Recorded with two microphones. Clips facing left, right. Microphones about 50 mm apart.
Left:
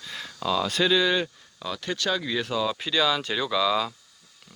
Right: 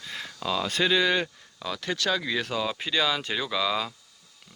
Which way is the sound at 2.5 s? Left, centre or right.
Right.